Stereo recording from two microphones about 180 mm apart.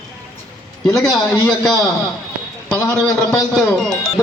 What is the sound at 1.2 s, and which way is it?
Speech, 15° left (ahead or behind).